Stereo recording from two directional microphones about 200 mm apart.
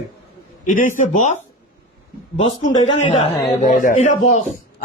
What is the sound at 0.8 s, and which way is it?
Speech, 40° left (ahead or behind).